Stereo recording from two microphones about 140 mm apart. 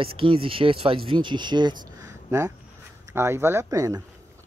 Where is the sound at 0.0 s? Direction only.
40° right (ahead or behind).